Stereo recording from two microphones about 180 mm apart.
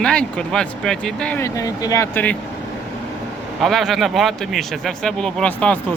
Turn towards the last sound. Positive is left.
turn(degrees=5)  # may be behind; listen again after turning